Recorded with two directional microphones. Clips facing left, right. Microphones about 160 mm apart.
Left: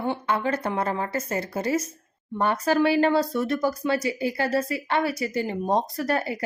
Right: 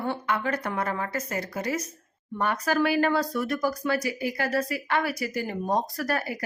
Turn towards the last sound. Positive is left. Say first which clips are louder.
# left 3 dB
turn(degrees=25)  # may be behind; listen again after turning